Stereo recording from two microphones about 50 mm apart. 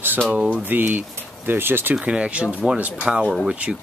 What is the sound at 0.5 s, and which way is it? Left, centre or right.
Speech, right.